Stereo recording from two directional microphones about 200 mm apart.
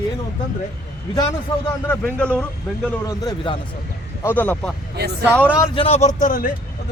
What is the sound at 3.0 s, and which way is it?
A man's voice, 15° left (ahead or behind).